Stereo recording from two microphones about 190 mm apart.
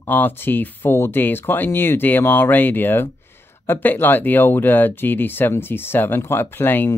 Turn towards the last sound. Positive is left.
turn(degrees=10)  # may be behind; listen again after turning